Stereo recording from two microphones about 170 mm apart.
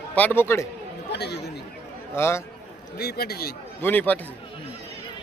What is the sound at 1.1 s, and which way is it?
Speech, 75° left (ahead or behind).